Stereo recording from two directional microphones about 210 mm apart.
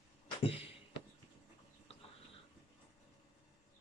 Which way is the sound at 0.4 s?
25° left (ahead or behind).